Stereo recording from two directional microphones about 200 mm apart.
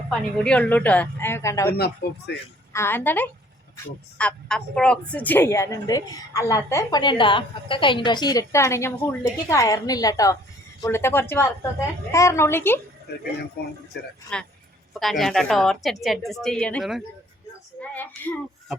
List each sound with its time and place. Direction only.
0.1 s speech: 5° left (ahead or behind)
1.7 s speech: 50° left (ahead or behind)
2.7 s speech: 10° left (ahead or behind)
14.3 s a woman's voice: 5° left (ahead or behind)